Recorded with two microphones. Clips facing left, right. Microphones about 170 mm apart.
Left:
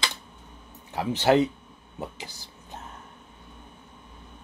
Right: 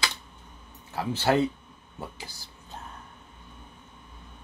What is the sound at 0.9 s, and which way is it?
Speech, 20° left (ahead or behind).